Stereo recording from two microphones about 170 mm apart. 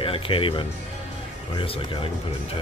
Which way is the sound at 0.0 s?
30° left (ahead or behind).